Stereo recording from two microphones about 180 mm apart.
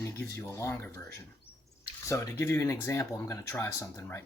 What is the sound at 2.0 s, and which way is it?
Speech, 15° left (ahead or behind).